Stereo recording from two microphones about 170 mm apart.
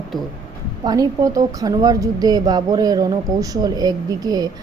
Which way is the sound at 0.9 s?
20° right (ahead or behind).